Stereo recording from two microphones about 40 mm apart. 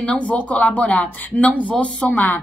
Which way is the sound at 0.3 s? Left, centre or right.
Left.